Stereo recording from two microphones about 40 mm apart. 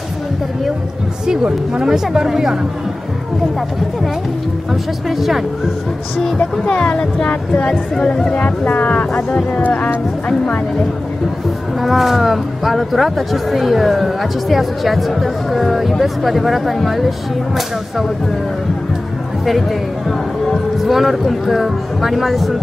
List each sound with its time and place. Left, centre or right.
1.2 s speech: centre
5.1 s speech: centre
6.3 s speech: centre
8.4 s speech: left
11.8 s speech: centre
19.4 s speech: centre